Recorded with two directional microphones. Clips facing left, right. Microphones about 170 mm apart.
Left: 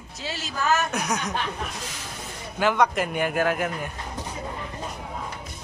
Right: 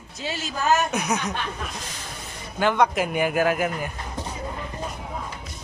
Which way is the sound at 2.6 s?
Centre (ahead or behind).